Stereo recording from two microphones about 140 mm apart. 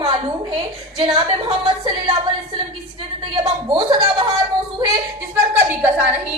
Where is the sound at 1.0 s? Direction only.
35° right (ahead or behind).